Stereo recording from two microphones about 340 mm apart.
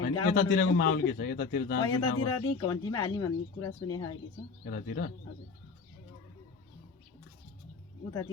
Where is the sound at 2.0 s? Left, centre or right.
Left.